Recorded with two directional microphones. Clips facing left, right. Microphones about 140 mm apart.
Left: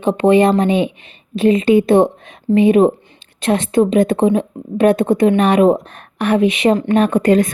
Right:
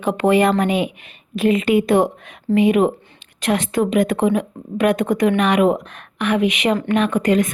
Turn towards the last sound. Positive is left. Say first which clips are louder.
# left 4 dB
turn(degrees=30)  # may be behind; listen again after turning